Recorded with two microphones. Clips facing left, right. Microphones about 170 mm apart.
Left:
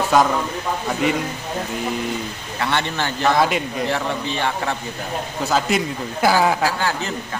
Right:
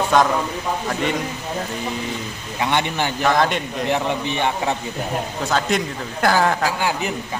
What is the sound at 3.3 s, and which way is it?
Speech, 5° left (ahead or behind).